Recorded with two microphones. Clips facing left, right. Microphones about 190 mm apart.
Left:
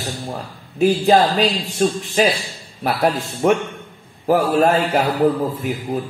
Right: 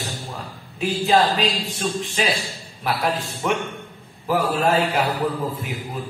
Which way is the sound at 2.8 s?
45° left (ahead or behind).